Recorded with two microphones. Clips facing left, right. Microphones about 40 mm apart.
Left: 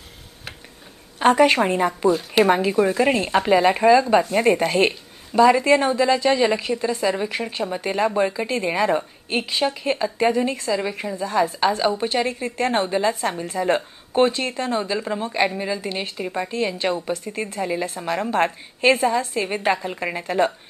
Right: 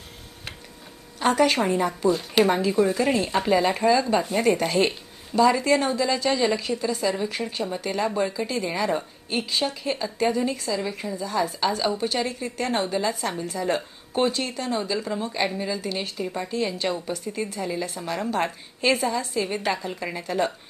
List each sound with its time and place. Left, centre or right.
1.2 s speech: left
2.0 s a woman's voice: centre
2.4 s a woman's voice: left
4.8 s a sound: left
5.4 s a woman's voice: left
11.2 s speech: left
15.8 s speech: left
17.7 s a woman's voice: left
17.9 s speech: left